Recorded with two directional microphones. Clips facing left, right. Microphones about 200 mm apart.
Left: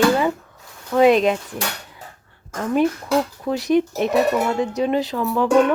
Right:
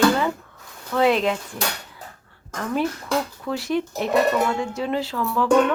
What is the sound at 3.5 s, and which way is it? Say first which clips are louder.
Speech: left 7 dB; 20° left (ahead or behind).